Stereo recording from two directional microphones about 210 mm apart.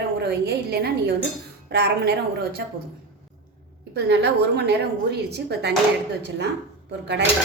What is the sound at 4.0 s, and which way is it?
A woman's voice, 55° right (ahead or behind).